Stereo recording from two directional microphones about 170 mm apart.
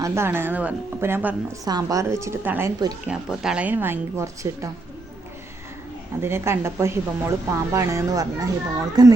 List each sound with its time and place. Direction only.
0.0 s a woman's voice: 15° right (ahead or behind)
1.6 s a woman's voice: 20° right (ahead or behind)
3.1 s a woman's voice: 5° right (ahead or behind)
6.2 s a woman's voice: 15° right (ahead or behind)